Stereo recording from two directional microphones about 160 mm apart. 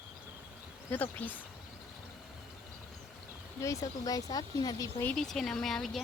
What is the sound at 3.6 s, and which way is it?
Speech, 20° left (ahead or behind).